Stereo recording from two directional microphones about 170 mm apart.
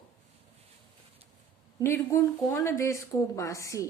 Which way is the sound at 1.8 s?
15° left (ahead or behind).